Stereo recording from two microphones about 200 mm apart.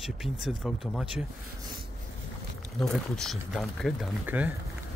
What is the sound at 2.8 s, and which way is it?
Speech, centre (ahead or behind).